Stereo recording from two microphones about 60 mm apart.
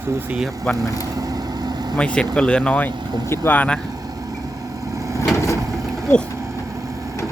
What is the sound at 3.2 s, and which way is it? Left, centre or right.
Speech, left.